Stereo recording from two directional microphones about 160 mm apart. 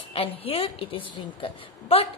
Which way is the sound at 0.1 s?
35° left (ahead or behind).